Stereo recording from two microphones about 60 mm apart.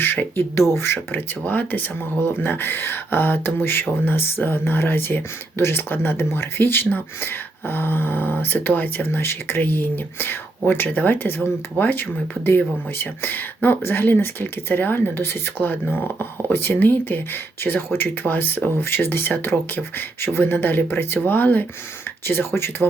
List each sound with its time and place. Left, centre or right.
0.0 s speech: left
0.5 s speech: left
9.0 s speech: left
22.3 s speech: left